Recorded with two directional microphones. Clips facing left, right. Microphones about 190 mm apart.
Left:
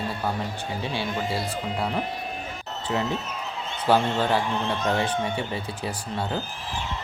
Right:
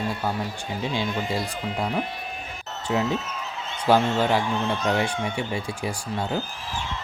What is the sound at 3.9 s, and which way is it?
Speech, 10° right (ahead or behind).